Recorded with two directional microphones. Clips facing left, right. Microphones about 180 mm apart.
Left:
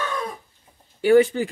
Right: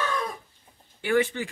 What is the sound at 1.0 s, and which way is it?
Speech, 35° left (ahead or behind).